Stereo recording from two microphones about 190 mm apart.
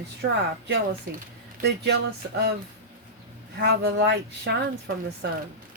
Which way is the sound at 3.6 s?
60° right (ahead or behind).